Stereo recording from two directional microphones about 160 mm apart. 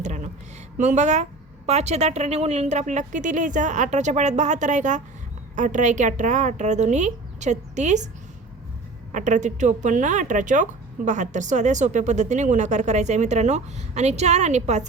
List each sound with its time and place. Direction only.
0.0 s a sound: 45° right (ahead or behind)
0.8 s speech: 45° right (ahead or behind)
9.1 s speech: 50° right (ahead or behind)